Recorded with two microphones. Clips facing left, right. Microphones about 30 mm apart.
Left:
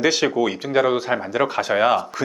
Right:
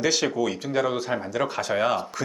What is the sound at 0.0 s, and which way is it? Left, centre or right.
Speech, centre.